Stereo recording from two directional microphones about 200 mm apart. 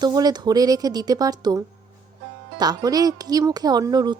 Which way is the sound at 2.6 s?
20° right (ahead or behind).